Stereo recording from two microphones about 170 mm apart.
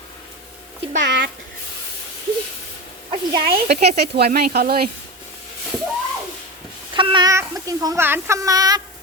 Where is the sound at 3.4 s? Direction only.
65° right (ahead or behind).